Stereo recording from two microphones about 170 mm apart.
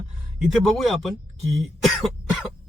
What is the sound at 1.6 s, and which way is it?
Cough, centre (ahead or behind).